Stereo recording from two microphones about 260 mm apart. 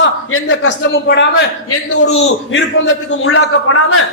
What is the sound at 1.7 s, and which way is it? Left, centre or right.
A man's voice, left.